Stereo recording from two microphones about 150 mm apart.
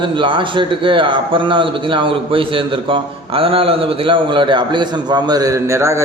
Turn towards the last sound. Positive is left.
turn(degrees=-20)  # may be behind; listen again after turning